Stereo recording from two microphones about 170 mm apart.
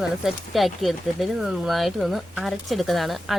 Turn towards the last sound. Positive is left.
turn(degrees=0)  # may be behind; listen again after turning